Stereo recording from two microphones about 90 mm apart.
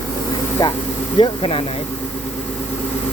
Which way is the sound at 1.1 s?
85° left.